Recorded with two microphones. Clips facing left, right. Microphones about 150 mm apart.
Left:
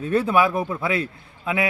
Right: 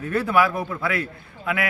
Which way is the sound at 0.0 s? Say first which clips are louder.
Left 1 dB; 20° left (ahead or behind).